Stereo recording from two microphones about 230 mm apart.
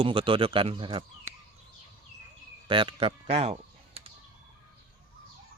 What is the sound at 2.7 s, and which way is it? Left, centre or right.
Speech, right.